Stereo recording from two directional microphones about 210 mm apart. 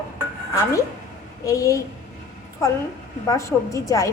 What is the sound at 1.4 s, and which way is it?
A woman's voice, 15° left (ahead or behind).